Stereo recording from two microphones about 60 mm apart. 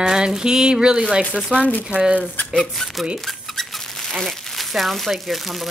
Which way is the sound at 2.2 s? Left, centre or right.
Left.